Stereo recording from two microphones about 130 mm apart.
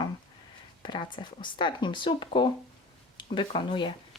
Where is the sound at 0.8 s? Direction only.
35° left (ahead or behind).